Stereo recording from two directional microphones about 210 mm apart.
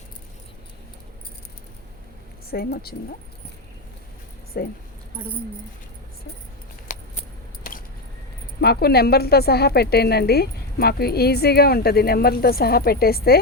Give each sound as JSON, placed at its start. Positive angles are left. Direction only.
{"t": 2.5, "sound": "speech", "side_deg": 45}
{"t": 4.5, "sound": "speech", "side_deg": 45}
{"t": 6.9, "sound": "keys jangling", "side_deg": 35}
{"t": 8.6, "sound": "speech", "side_deg": 50}